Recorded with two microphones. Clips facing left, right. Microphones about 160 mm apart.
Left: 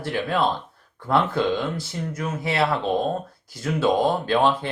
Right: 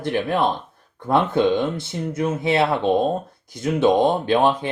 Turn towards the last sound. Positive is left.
turn(degrees=-15)  # may be behind; listen again after turning